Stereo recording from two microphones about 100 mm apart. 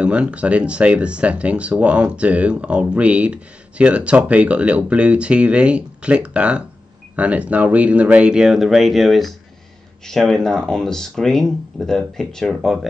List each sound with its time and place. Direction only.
0.0 s speech: 10° right (ahead or behind)